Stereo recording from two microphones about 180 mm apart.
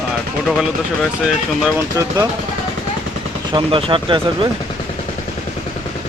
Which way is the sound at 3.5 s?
30° right (ahead or behind).